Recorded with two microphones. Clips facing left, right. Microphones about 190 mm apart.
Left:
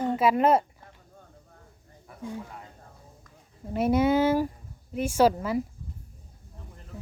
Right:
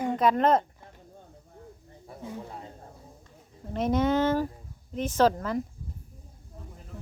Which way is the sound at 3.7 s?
10° left (ahead or behind).